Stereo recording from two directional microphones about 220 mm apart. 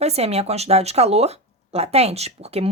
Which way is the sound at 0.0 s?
30° right (ahead or behind).